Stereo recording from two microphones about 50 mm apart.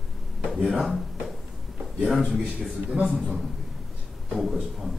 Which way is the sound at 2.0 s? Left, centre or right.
Centre.